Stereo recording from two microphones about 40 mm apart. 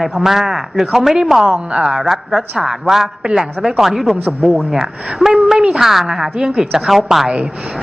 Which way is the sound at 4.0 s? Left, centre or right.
Centre.